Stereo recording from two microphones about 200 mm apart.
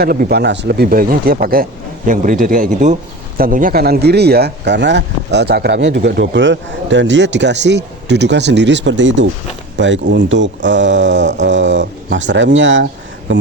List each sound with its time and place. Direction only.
0.0 s a man's voice: 50° right (ahead or behind); by 13.4 s 65° right (ahead or behind)